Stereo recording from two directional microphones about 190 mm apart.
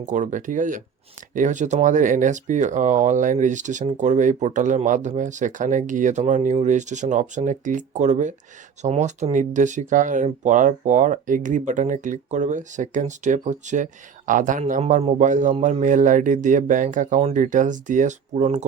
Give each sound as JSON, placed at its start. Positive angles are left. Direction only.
{"t": 0.0, "sound": "speech", "side_deg": -40}